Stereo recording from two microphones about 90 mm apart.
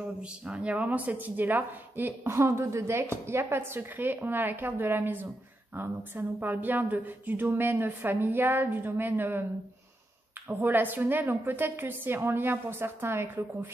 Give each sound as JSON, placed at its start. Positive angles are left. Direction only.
{"t": 0.0, "sound": "speech", "side_deg": -10}
{"t": 10.6, "sound": "speech", "side_deg": -20}